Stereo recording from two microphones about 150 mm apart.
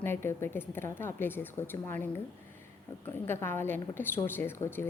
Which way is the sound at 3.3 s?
15° left (ahead or behind).